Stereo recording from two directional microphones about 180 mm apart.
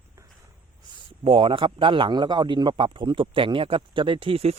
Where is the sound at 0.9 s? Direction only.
30° right (ahead or behind).